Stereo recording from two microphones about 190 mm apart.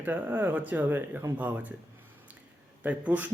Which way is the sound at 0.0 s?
10° right (ahead or behind).